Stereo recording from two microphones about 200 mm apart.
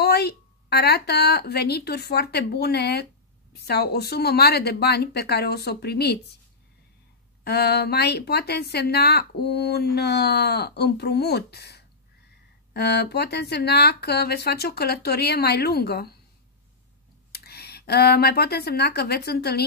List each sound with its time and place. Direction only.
0.0 s speech: 55° left (ahead or behind)
7.4 s a woman's voice: 55° left (ahead or behind)
17.3 s speech: 55° left (ahead or behind)